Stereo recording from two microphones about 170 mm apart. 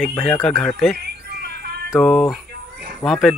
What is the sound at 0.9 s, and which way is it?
Music, 70° right (ahead or behind).